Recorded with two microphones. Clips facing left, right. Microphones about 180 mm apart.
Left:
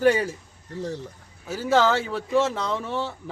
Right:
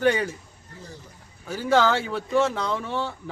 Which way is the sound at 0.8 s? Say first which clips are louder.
Left 13 dB; 80° left.